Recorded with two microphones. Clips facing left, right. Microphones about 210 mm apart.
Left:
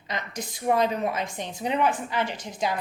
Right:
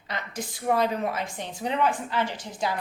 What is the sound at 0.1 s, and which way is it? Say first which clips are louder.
A woman's voice: left 1 dB; 20° left (ahead or behind).